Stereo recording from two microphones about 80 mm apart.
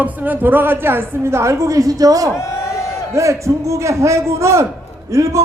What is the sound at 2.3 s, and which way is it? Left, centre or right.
Speech, left.